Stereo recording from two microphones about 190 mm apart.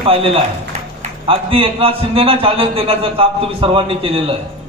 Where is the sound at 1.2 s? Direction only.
30° right (ahead or behind).